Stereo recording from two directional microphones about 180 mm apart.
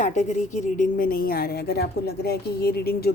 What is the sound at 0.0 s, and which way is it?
A woman's voice, 45° left (ahead or behind).